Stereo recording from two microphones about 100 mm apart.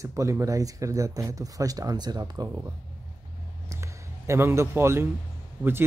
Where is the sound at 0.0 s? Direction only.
30° right (ahead or behind).